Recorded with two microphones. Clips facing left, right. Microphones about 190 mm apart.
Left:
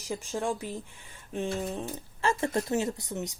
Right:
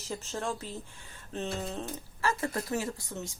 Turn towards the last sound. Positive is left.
turn(degrees=20)  # may be behind; listen again after turning